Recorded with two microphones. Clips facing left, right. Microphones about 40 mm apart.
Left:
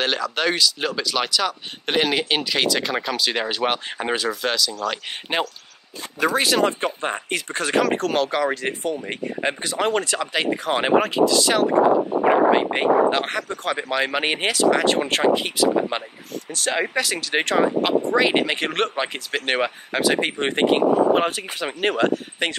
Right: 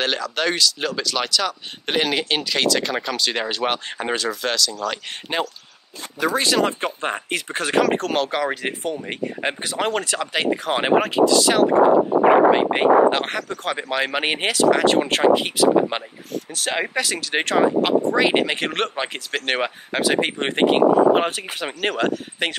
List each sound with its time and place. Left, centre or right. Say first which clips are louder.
0.0 s speech: even; centre
5.3 s speech: even; centre
6.4 s speech: even; centre